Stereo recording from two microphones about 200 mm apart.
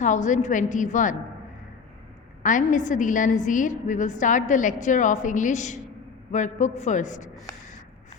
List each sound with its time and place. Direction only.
0.0 s a woman's voice: 40° left (ahead or behind)
2.4 s a woman's voice: 40° left (ahead or behind)